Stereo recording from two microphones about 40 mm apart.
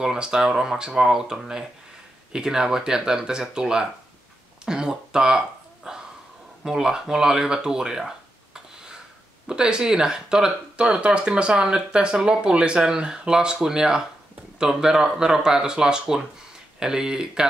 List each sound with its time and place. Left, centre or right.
0.0 s speech: centre
4.6 s a sound: centre
6.6 s speech: centre
9.5 s speech: centre